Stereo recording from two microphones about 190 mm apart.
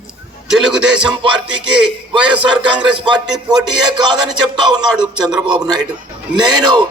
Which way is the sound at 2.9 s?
25° right (ahead or behind).